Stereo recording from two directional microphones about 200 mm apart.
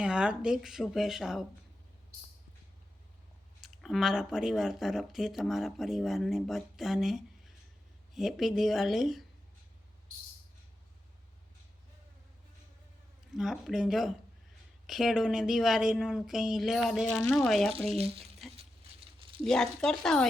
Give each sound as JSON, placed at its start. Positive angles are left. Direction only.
{"t": 0.0, "sound": "speech", "side_deg": -5}
{"t": 3.6, "sound": "speech", "side_deg": 0}
{"t": 13.3, "sound": "speech", "side_deg": 0}
{"t": 17.9, "sound": "speech", "side_deg": -30}
{"t": 18.9, "sound": "a sound", "side_deg": -25}
{"t": 19.5, "sound": "speech", "side_deg": 5}